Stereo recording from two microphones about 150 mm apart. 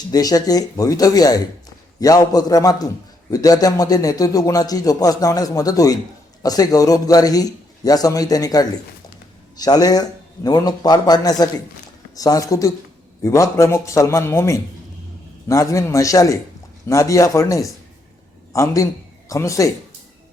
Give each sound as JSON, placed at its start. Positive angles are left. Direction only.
{"t": 0.1, "sound": "a man's voice", "side_deg": 25}